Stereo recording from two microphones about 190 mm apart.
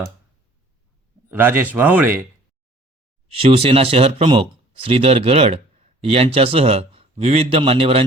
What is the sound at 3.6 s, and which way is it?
A man's voice, 30° right (ahead or behind).